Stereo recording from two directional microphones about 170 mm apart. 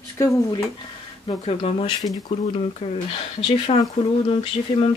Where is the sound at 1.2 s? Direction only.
35° left (ahead or behind).